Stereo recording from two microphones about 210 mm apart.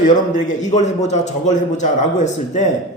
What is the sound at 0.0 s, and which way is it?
A man's voice, 35° left (ahead or behind).